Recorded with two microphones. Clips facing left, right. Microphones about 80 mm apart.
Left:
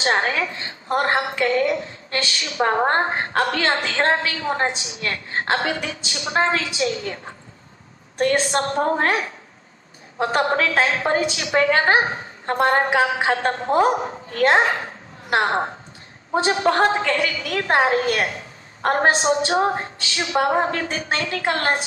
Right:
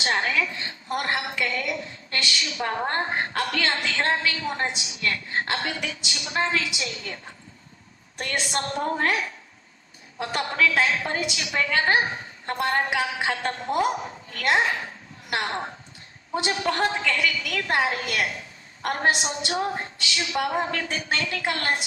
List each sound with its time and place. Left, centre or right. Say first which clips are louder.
0.0 s a woman's voice: left 4 dB; left